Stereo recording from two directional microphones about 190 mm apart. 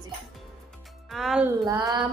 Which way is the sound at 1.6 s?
20° right (ahead or behind).